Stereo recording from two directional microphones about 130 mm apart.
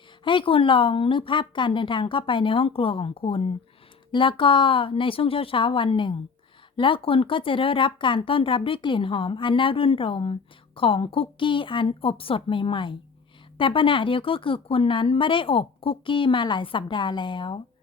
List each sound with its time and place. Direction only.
0.3 s speech: 40° left (ahead or behind)